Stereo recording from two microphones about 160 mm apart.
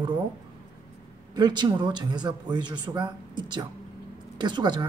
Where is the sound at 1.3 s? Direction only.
25° right (ahead or behind).